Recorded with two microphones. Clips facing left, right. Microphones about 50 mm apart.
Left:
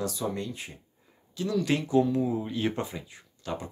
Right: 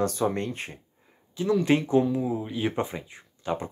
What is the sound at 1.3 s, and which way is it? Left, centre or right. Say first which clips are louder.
Speech: right 5 dB; right.